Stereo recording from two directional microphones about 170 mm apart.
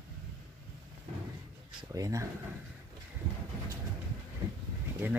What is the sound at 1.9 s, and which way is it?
Speech, 20° right (ahead or behind).